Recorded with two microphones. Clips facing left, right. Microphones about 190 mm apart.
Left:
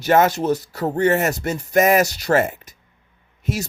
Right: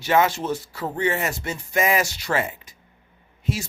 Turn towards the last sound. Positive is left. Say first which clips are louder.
# left 2 dB
turn(degrees=40)  # may be behind; listen again after turning